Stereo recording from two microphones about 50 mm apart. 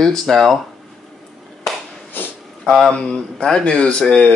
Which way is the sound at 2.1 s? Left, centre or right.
Left.